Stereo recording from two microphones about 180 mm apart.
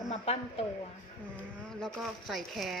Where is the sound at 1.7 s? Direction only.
5° left (ahead or behind).